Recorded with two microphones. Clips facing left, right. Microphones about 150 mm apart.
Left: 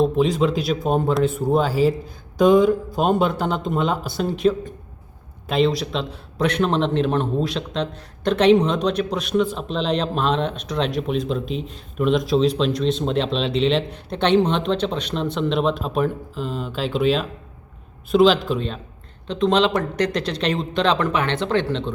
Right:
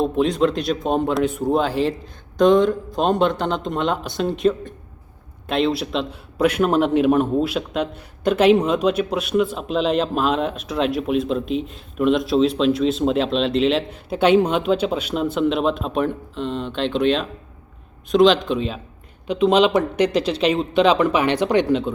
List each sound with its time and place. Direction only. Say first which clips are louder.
0.0 s a man's voice: even; centre (ahead or behind)